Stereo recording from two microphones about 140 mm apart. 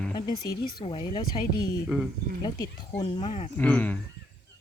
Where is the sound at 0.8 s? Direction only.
40° left (ahead or behind).